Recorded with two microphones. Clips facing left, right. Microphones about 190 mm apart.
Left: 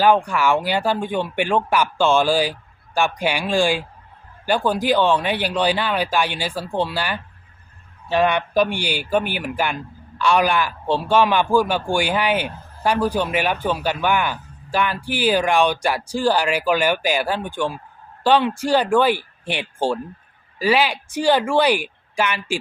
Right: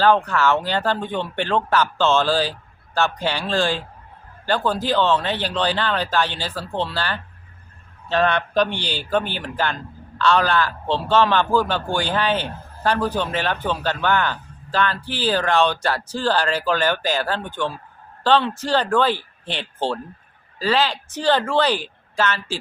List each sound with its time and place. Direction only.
0.0 s a man's voice: 10° left (ahead or behind)